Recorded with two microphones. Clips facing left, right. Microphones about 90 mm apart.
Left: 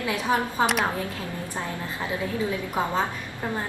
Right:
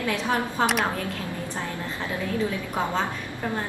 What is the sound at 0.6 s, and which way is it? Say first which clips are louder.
Speech: right 1 dB; centre (ahead or behind).